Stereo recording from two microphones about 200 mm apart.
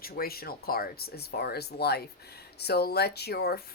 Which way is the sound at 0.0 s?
50° left (ahead or behind).